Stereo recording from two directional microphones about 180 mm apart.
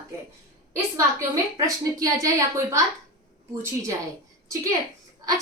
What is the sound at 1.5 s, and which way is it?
Speech, 20° right (ahead or behind).